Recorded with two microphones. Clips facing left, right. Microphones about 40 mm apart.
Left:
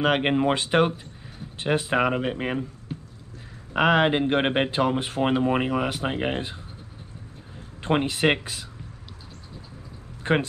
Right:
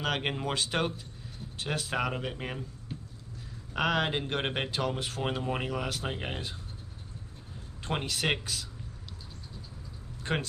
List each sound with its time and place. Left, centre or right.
0.0 s speech: left
3.7 s speech: left
7.8 s speech: left
10.3 s speech: left